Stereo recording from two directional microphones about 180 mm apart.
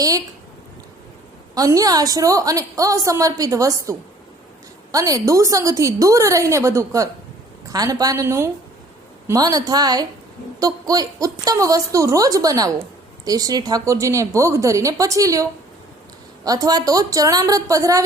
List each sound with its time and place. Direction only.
1.5 s a woman's voice: 20° right (ahead or behind)